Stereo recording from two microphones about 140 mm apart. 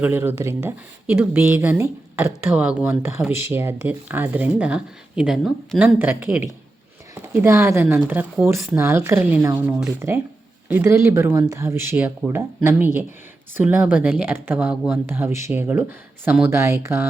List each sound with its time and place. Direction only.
0.0 s speech: 15° right (ahead or behind)